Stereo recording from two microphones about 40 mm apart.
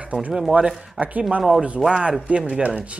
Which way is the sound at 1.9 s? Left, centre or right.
Right.